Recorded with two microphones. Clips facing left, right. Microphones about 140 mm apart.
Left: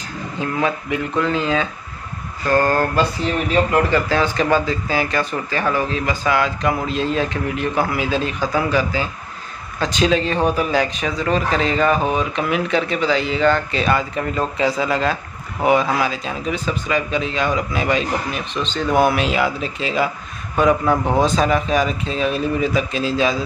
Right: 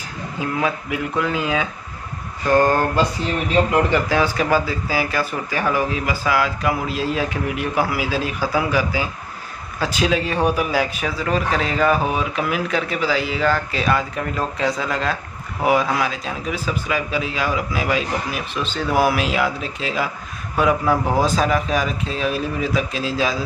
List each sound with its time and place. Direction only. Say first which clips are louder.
0.4 s speech: left 1 dB; 5° right (ahead or behind)